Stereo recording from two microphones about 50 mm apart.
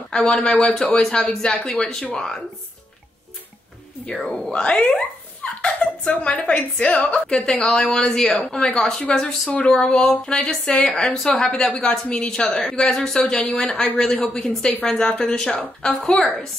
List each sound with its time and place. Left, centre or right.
0.1 s speech: centre
4.5 s speech: left